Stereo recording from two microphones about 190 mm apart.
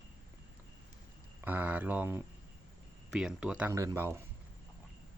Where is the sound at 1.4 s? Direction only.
10° right (ahead or behind).